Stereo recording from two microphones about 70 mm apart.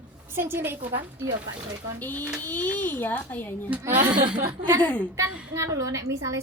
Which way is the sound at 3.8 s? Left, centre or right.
Right.